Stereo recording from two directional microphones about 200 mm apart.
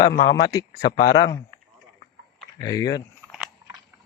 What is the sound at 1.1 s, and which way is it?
Speech, 20° left (ahead or behind).